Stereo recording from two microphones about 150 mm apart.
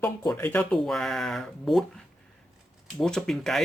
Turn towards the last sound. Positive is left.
turn(degrees=5)  # may be behind; listen again after turning